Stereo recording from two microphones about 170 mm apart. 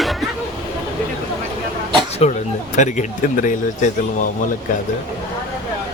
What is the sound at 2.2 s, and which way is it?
Speech, 40° left (ahead or behind).